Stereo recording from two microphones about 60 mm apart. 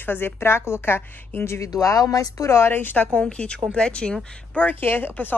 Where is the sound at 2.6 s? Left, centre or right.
Left.